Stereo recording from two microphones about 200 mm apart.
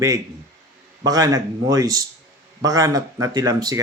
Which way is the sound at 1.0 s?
20° right (ahead or behind).